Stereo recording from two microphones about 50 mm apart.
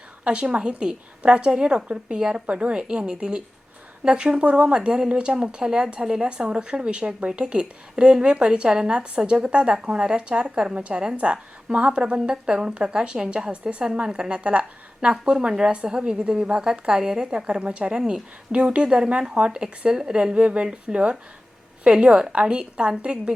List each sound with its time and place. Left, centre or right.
0.3 s a woman's voice: right
20.3 s a woman's voice: right